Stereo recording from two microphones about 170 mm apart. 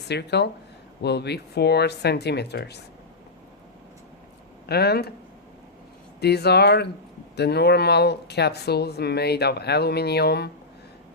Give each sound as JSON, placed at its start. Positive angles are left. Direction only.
{"t": 0.1, "sound": "speech", "side_deg": 80}
{"t": 4.7, "sound": "speech", "side_deg": 70}
{"t": 6.1, "sound": "speech", "side_deg": 75}